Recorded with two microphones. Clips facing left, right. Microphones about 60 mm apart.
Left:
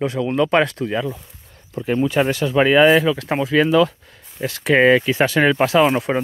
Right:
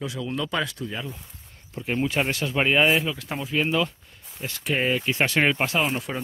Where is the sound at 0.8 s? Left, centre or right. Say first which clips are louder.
Left 10 dB; left.